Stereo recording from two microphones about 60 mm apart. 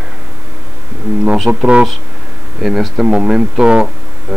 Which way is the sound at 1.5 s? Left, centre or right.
Centre.